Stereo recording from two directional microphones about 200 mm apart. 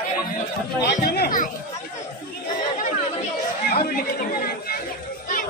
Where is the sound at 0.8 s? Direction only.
50° left (ahead or behind).